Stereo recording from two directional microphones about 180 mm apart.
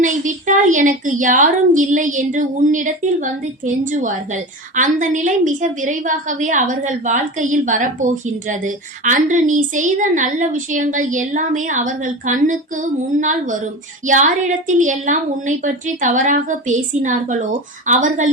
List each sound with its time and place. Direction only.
0.0 s a woman's voice: 45° right (ahead or behind)